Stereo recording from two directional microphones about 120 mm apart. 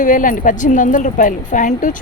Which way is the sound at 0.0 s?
90° left.